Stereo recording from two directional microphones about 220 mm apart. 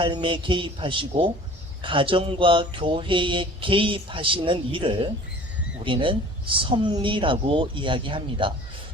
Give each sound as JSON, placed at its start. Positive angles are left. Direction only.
{"t": 0.0, "sound": "speech", "side_deg": -25}